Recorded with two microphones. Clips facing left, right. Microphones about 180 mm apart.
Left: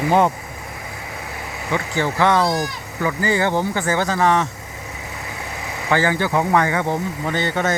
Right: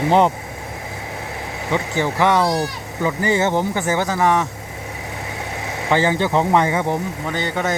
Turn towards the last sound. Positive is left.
turn(degrees=-10)  # may be behind; listen again after turning